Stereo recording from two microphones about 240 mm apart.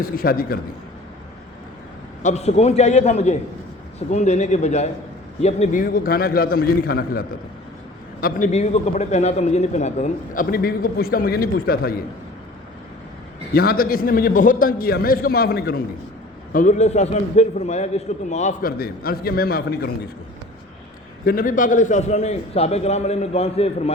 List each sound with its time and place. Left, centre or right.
0.0 s a man's voice: left
2.2 s a man's voice: left
13.5 s a man's voice: left
21.2 s a man's voice: left